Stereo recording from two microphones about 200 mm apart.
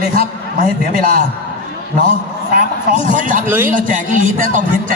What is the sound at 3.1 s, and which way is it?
Speech, 40° right (ahead or behind).